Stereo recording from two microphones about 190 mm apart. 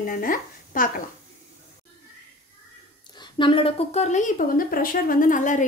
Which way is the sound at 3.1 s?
25° left (ahead or behind).